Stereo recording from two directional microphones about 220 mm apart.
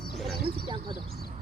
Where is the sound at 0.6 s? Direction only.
20° right (ahead or behind).